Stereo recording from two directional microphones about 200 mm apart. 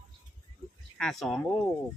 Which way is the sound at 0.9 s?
Centre (ahead or behind).